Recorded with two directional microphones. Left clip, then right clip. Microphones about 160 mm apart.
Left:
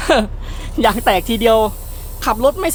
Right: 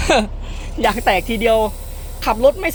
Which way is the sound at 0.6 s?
25° left (ahead or behind).